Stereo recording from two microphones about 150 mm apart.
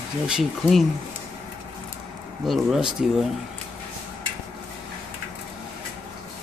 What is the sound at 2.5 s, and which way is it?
Speech, 5° right (ahead or behind).